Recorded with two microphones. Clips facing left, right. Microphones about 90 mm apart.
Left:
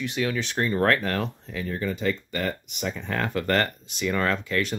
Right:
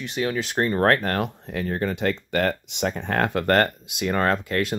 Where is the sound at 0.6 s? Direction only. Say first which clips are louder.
Right 3 dB; 40° right (ahead or behind).